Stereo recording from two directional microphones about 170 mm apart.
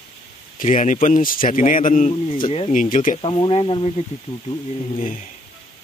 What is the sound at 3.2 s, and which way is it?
Speech, 30° left (ahead or behind).